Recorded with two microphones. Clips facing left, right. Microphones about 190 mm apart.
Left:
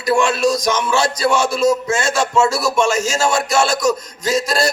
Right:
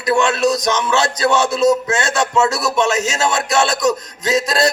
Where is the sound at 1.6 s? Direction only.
20° right (ahead or behind).